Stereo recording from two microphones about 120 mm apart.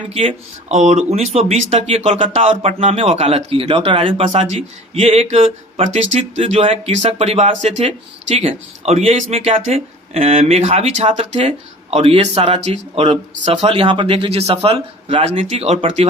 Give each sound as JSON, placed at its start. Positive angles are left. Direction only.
{"t": 0.1, "sound": "speech", "side_deg": -55}
{"t": 0.8, "sound": "speech", "side_deg": -80}
{"t": 4.2, "sound": "speech", "side_deg": -65}
{"t": 5.8, "sound": "speech", "side_deg": -70}
{"t": 15.2, "sound": "speech", "side_deg": -60}